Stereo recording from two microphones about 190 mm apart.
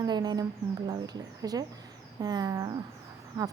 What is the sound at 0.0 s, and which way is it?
Speech, 20° right (ahead or behind).